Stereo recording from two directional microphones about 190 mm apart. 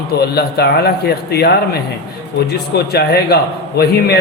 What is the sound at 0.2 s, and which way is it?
A man's voice, 55° left (ahead or behind).